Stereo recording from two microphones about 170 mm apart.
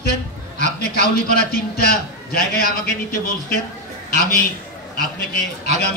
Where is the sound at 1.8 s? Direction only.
65° left (ahead or behind).